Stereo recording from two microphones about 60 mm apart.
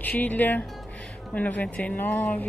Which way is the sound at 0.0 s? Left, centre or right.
Left.